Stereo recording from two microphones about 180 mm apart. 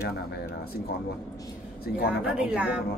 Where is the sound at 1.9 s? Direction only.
60° left (ahead or behind).